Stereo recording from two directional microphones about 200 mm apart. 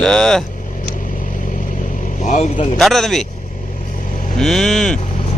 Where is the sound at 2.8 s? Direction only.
Centre (ahead or behind).